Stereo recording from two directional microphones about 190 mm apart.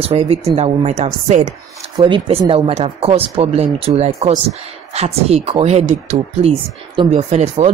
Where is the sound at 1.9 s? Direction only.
25° right (ahead or behind).